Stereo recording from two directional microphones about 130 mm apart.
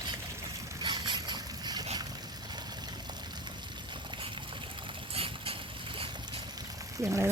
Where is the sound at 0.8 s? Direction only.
35° right (ahead or behind).